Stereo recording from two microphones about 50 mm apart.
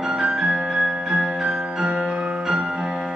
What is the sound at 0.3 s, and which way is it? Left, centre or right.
Music, right.